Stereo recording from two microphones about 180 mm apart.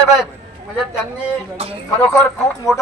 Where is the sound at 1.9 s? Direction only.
10° left (ahead or behind).